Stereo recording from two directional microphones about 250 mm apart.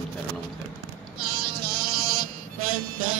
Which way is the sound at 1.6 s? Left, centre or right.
Right.